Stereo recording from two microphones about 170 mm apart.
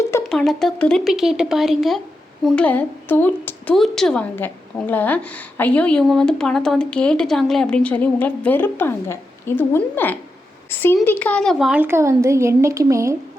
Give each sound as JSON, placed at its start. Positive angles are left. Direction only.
{"t": 0.3, "sound": "a woman's voice", "side_deg": 5}
{"t": 11.7, "sound": "speech", "side_deg": -10}